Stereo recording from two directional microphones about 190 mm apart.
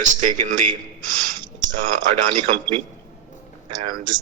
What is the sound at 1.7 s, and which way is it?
Speech, 40° right (ahead or behind).